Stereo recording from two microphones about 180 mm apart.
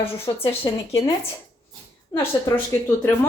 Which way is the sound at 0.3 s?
25° left (ahead or behind).